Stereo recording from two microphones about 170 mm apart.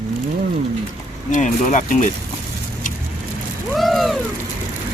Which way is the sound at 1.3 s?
45° left (ahead or behind).